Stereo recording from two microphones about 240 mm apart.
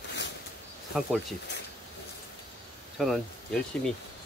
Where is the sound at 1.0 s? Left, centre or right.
Centre.